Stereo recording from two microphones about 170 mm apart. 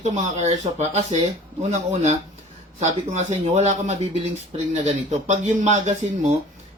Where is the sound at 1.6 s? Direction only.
40° right (ahead or behind).